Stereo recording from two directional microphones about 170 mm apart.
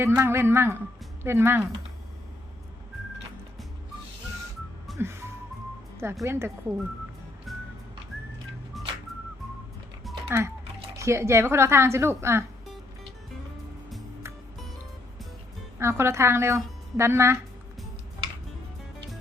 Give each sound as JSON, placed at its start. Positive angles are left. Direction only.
{"t": 0.0, "sound": "a woman's voice", "side_deg": -15}
{"t": 4.9, "sound": "music", "side_deg": -15}
{"t": 6.2, "sound": "a woman's voice", "side_deg": -15}
{"t": 7.5, "sound": "music", "side_deg": 0}
{"t": 10.2, "sound": "a woman's voice", "side_deg": -15}
{"t": 15.8, "sound": "a woman's voice", "side_deg": -15}